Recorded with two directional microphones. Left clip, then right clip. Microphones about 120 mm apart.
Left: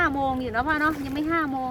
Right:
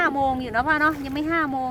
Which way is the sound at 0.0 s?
25° right (ahead or behind).